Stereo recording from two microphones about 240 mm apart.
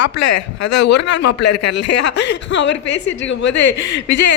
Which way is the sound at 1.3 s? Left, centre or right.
Left.